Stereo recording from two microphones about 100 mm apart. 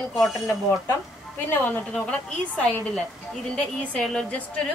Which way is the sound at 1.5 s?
15° left (ahead or behind).